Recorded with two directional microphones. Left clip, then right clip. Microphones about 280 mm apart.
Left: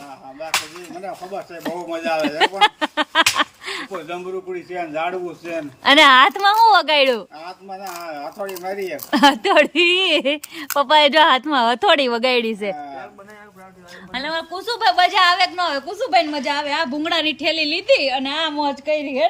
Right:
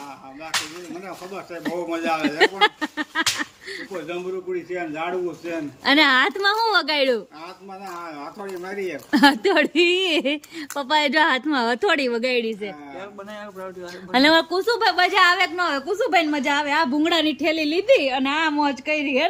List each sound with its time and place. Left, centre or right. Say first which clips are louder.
1.6 s a woman's voice: even; centre
8.6 s a woman's voice: left 1 dB; centre
14.1 s a woman's voice: right 9 dB; centre
14.5 s a woman's voice: left 2 dB; centre